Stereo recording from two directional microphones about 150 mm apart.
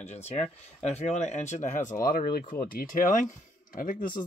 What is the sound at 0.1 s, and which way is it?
Speech, 45° left (ahead or behind).